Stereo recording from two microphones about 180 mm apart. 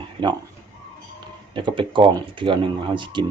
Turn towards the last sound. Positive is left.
turn(degrees=-25)  # may be behind; listen again after turning